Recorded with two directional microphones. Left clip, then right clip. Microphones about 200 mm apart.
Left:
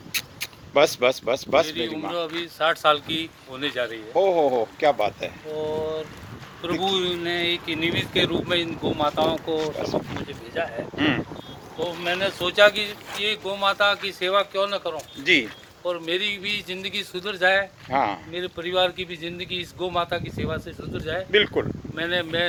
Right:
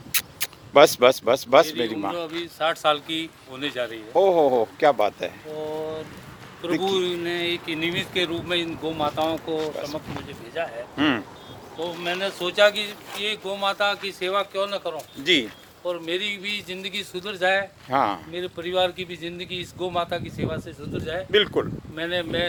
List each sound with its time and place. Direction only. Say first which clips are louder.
0.1 s a sound: right 1 dB; 55° right (ahead or behind)
2.1 s speech: left 2 dB; 5° left (ahead or behind)
4.1 s speech: right 2 dB; 35° right (ahead or behind)
5.5 s speech: left 4 dB; 10° left (ahead or behind)
10.9 s speech: right 1 dB; 30° right (ahead or behind)
11.8 s speech: left 2 dB; 5° right (ahead or behind)
17.9 s speech: right 1 dB; 25° right (ahead or behind)
18.3 s speech: left 1 dB; centre (ahead or behind)